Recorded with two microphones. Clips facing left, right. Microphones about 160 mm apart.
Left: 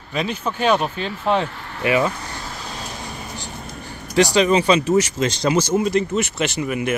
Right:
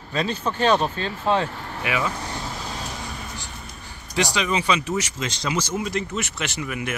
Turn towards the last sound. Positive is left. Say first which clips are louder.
# left 7 dB
turn(degrees=25)  # may be behind; listen again after turning